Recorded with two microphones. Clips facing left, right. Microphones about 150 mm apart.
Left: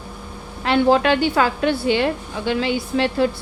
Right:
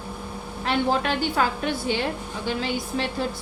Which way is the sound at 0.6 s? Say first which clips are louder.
Left 7 dB; 90° left.